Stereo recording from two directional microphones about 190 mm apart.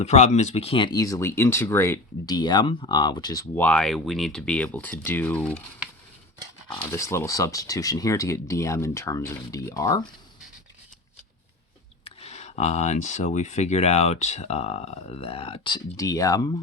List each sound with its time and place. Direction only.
0.0 s speech: 35° left (ahead or behind)
3.5 s speech: 10° left (ahead or behind)
6.9 s speech: 15° left (ahead or behind)
12.0 s speech: 35° left (ahead or behind); by 16.6 s 20° left (ahead or behind)